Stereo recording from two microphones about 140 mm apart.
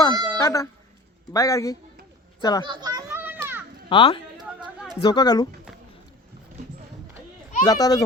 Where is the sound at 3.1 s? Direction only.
15° right (ahead or behind).